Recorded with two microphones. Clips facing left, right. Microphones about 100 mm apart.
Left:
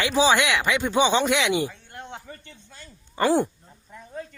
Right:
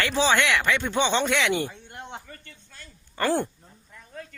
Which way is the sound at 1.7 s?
20° right (ahead or behind).